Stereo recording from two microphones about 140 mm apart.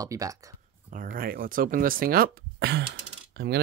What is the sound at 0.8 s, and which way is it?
Speech, 80° right.